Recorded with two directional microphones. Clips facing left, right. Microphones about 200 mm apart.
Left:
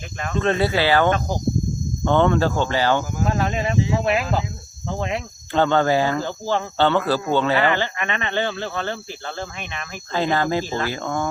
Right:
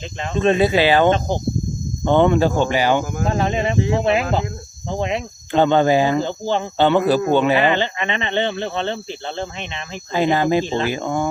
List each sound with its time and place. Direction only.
0.2 s speech: 20° right (ahead or behind)
3.0 s speech: 55° right (ahead or behind)
3.2 s speech: 25° right (ahead or behind)
3.8 s speech: 55° right (ahead or behind)
4.0 s speech: 25° right (ahead or behind)